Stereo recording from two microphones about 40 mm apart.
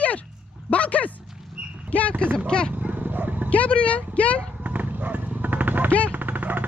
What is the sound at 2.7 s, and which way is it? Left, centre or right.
Dog, right.